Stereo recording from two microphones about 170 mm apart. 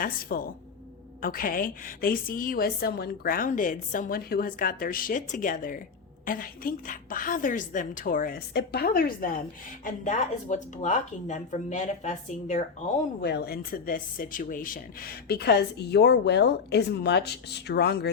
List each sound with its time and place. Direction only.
0.0 s a woman's voice: 55° left (ahead or behind)
13.2 s speech: 75° left (ahead or behind)